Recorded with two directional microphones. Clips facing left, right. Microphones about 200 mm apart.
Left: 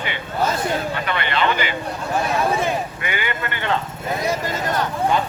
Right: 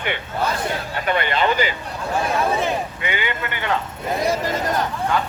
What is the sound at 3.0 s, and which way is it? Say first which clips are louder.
Speech: right 1 dB; 20° right (ahead or behind).